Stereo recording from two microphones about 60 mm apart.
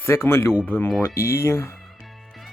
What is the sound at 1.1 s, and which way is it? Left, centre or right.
Speech, left.